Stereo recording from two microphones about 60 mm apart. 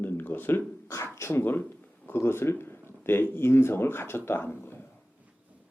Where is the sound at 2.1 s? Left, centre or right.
Left.